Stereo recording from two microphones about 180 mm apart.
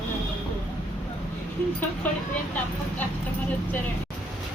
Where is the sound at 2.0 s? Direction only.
10° left (ahead or behind).